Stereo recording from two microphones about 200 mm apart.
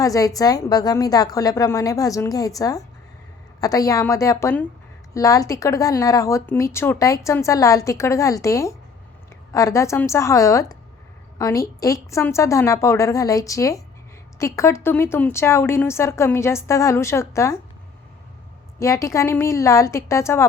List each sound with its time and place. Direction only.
0.0 s a woman's voice: 15° left (ahead or behind)
18.8 s speech: 15° left (ahead or behind)